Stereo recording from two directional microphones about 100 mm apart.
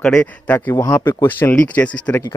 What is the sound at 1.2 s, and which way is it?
Speech, 20° left (ahead or behind).